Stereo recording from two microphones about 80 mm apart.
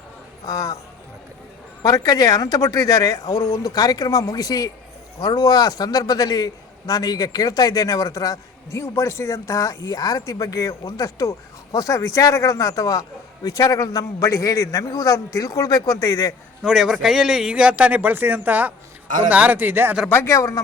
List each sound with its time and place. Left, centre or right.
0.4 s speech: left
1.8 s speech: left
16.6 s a man's voice: centre; by 20.0 s right
20.2 s speech: left